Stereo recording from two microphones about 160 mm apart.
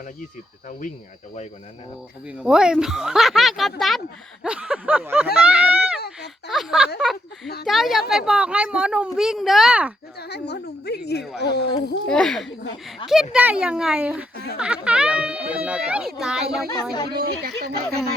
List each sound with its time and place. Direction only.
2.2 s a child's voice: 5° right (ahead or behind)
10.2 s a woman's voice: 90° left
12.0 s speech: 5° left (ahead or behind)
13.3 s a child's voice: 5° right (ahead or behind)
17.1 s a woman's voice: 75° right (ahead or behind)